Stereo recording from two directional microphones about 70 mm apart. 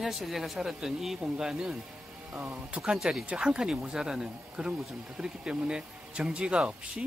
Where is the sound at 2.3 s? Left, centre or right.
Right.